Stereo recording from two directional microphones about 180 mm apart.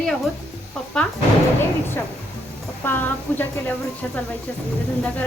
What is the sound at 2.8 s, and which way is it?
Speech, 10° left (ahead or behind).